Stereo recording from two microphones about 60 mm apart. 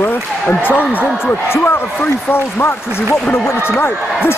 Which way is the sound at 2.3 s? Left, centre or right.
Left.